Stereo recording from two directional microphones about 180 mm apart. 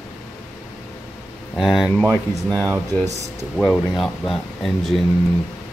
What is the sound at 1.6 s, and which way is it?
Speech, centre (ahead or behind).